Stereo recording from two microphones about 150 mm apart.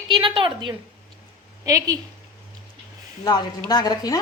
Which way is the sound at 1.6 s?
25° right (ahead or behind).